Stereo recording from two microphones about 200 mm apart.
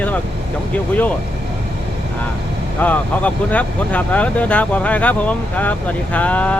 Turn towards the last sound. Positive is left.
turn(degrees=5)  # may be behind; listen again after turning